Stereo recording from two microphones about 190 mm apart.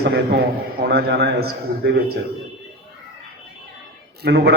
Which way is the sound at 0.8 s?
60° right (ahead or behind).